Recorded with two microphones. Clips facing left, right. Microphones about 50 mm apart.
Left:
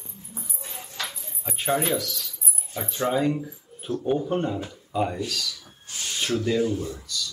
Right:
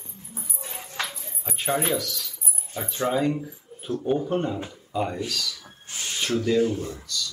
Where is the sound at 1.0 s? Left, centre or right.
Right.